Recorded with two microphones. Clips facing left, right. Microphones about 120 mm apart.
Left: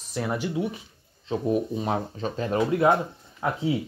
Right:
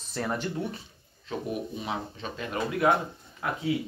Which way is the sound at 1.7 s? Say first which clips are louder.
Left 6 dB; 45° left (ahead or behind).